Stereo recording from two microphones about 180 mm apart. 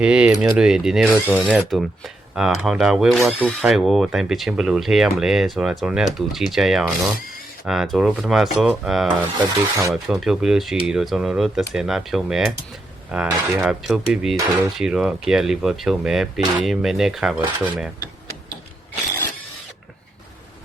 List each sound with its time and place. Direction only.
0.0 s speech: 5° right (ahead or behind)
9.4 s speech: 15° right (ahead or behind)
9.9 s speech: centre (ahead or behind)